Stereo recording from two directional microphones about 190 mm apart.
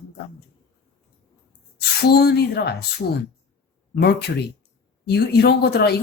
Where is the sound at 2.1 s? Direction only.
55° left (ahead or behind).